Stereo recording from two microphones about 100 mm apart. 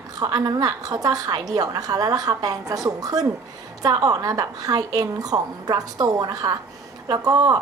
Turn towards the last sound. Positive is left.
turn(degrees=-40)  # may be behind; listen again after turning